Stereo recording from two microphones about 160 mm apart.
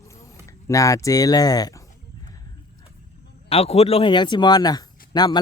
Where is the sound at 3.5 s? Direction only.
40° left (ahead or behind).